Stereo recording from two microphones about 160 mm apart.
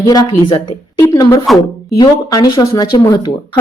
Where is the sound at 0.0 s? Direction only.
25° left (ahead or behind).